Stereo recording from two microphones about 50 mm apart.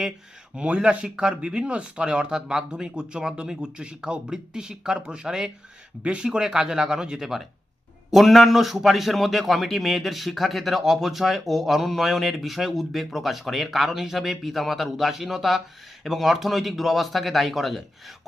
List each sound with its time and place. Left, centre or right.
0.5 s speech: right
1.0 s speech: centre